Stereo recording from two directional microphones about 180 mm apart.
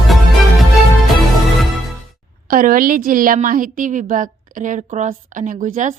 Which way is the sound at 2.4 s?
50° right (ahead or behind).